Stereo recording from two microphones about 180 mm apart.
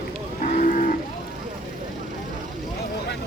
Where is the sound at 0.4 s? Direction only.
45° left (ahead or behind).